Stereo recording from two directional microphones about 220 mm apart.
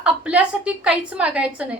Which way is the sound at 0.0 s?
5° right (ahead or behind).